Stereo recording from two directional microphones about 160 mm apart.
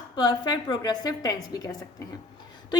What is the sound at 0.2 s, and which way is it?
A woman's voice, 25° left (ahead or behind).